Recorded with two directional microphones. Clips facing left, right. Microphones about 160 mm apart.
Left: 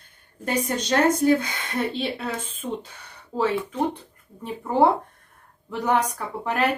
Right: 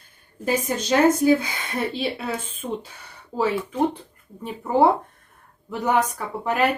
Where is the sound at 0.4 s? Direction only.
10° right (ahead or behind).